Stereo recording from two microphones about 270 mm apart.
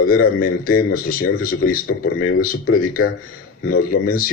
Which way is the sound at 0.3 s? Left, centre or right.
Left.